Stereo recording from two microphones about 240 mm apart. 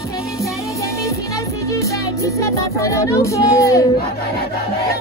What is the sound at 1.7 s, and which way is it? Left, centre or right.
Music, centre.